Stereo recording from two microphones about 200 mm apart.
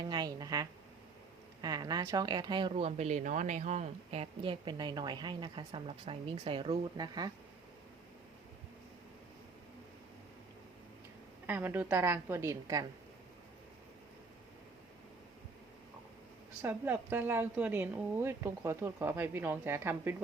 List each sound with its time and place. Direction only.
0.0 s speech: 20° right (ahead or behind)
11.4 s a woman's voice: 10° right (ahead or behind)
16.6 s a woman's voice: 10° right (ahead or behind)